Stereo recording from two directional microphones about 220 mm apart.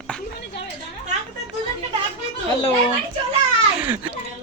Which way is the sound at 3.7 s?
10° right (ahead or behind).